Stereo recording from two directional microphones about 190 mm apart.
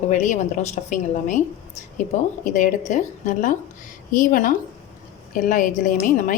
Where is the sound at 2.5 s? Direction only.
40° left (ahead or behind).